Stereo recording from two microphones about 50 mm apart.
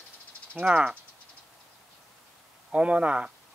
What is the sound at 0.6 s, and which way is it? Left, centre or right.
Speech, right.